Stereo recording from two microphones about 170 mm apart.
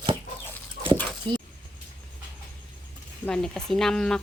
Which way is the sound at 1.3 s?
25° right (ahead or behind).